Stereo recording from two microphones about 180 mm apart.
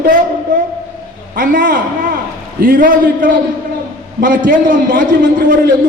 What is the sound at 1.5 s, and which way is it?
A man's voice, 50° right (ahead or behind).